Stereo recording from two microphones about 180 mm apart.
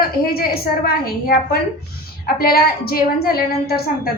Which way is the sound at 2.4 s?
55° left (ahead or behind).